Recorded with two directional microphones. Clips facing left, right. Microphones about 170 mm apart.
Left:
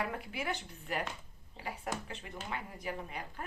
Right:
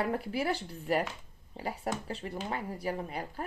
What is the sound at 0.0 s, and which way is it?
Speech, 35° right (ahead or behind).